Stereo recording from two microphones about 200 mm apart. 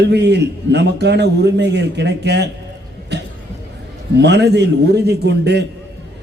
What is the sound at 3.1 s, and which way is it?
Cough, 55° right (ahead or behind).